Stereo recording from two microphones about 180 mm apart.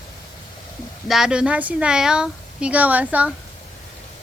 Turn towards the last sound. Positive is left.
turn(degrees=-10)  # may be behind; listen again after turning